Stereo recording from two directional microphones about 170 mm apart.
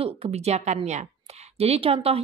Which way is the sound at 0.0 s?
35° right (ahead or behind).